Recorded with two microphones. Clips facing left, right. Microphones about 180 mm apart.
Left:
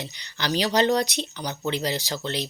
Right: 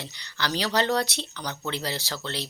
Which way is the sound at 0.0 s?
20° left (ahead or behind).